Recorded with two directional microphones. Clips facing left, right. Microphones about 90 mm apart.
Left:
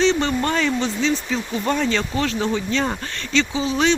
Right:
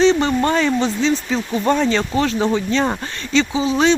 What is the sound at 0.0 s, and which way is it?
Speech, 20° right (ahead or behind).